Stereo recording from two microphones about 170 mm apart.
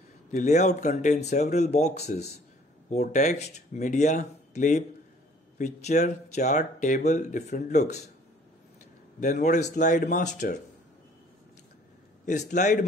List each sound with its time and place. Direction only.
0.3 s speech: 45° left (ahead or behind)
9.2 s speech: 45° left (ahead or behind)
12.3 s speech: 45° left (ahead or behind)